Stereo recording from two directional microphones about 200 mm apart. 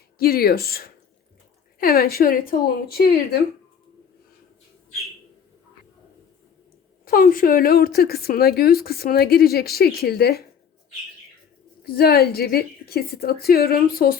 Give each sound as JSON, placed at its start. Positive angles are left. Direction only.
{"t": 0.2, "sound": "a woman's voice", "side_deg": 50}
{"t": 7.0, "sound": "a woman's voice", "side_deg": 45}
{"t": 11.9, "sound": "a woman's voice", "side_deg": 50}